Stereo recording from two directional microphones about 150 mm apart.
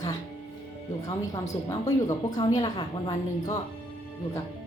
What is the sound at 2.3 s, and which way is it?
Speech, 30° left (ahead or behind).